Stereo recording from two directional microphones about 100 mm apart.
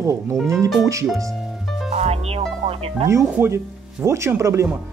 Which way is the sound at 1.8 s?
90° right.